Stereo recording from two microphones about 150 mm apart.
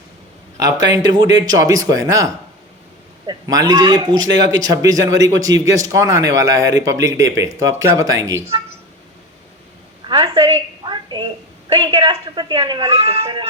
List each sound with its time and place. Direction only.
0.5 s a man's voice: 25° right (ahead or behind)
10.3 s a sound: 35° right (ahead or behind)
11.7 s speech: 35° right (ahead or behind)